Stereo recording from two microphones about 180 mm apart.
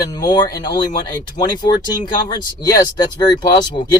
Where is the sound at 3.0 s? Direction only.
25° left (ahead or behind).